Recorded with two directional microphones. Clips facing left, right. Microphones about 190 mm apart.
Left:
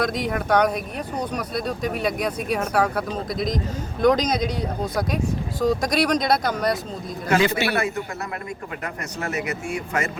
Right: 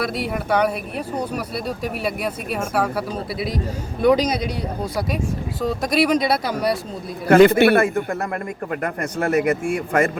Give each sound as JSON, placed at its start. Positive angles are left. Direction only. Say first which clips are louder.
{"t": 0.0, "sound": "speech", "louder": "even", "side_deg": -5}
{"t": 7.3, "sound": "a man's voice", "louder": "right 9 dB", "side_deg": -55}